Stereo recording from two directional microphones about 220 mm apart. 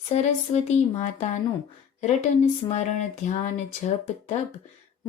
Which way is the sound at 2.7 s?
30° left (ahead or behind).